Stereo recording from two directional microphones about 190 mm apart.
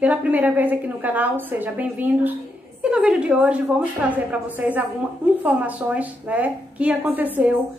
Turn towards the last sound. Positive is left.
turn(degrees=-10)  # may be behind; listen again after turning